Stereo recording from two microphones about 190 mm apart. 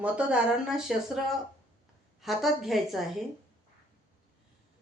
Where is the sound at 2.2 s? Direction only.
Centre (ahead or behind).